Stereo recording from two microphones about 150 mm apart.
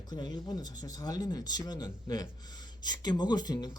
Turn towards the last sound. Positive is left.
turn(degrees=25)  # may be behind; listen again after turning